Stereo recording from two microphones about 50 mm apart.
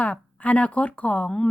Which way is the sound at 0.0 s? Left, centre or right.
Left.